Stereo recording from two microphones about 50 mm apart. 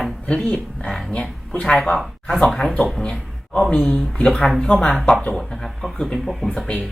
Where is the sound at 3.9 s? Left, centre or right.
Centre.